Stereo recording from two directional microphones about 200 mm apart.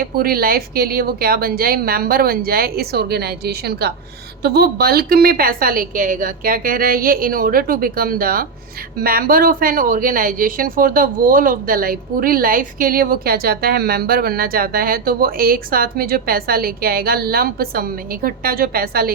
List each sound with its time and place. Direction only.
0.0 s a woman's voice: 50° right (ahead or behind)